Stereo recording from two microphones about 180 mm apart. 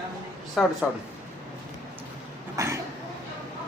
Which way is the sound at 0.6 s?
Centre (ahead or behind).